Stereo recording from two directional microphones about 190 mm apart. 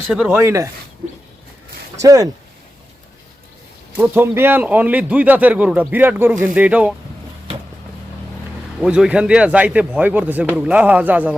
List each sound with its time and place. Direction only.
0.1 s a man's voice: 5° right (ahead or behind)
2.0 s a man's voice: 15° right (ahead or behind)
3.9 s a man's voice: 10° right (ahead or behind)
8.8 s a man's voice: 5° right (ahead or behind)